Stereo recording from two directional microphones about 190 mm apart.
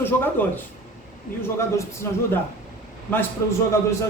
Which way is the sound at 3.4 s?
15° left (ahead or behind).